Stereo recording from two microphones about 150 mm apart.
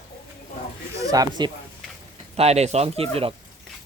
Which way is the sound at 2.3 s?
45° right (ahead or behind).